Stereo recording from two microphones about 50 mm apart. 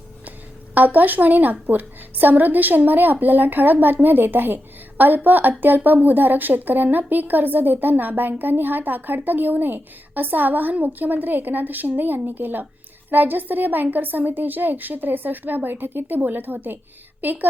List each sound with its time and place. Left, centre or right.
0.3 s a woman's voice: right